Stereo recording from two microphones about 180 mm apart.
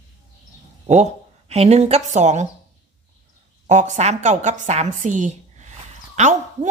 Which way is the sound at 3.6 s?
40° right (ahead or behind).